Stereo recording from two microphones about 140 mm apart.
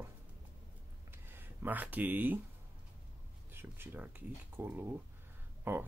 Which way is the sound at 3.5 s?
15° right (ahead or behind).